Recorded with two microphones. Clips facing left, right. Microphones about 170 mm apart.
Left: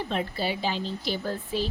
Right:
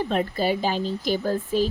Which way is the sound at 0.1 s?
45° right (ahead or behind).